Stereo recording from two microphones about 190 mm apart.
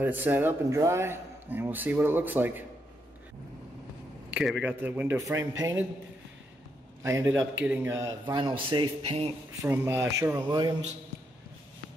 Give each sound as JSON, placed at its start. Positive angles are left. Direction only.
{"t": 0.0, "sound": "a man's voice", "side_deg": -10}
{"t": 4.3, "sound": "a man's voice", "side_deg": -5}
{"t": 7.0, "sound": "a man's voice", "side_deg": -15}
{"t": 9.6, "sound": "a man's voice", "side_deg": -15}